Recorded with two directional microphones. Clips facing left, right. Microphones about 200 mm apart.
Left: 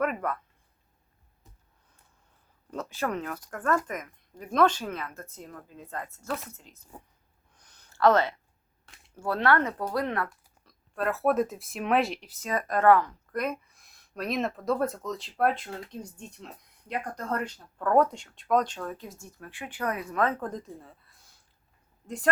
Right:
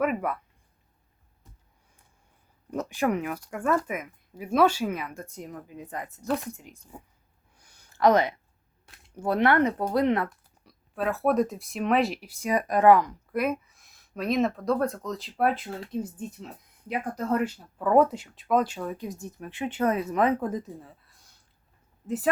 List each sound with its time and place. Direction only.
0.0 s speech: 5° right (ahead or behind)
2.6 s speech: 15° right (ahead or behind)
7.5 s a sound: 10° right (ahead or behind)
9.1 s speech: 20° right (ahead or behind)
10.7 s speech: centre (ahead or behind); by 20.3 s 20° right (ahead or behind)
20.4 s speech: 5° right (ahead or behind)